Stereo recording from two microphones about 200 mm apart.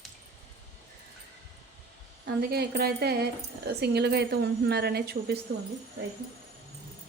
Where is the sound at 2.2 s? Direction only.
55° right (ahead or behind).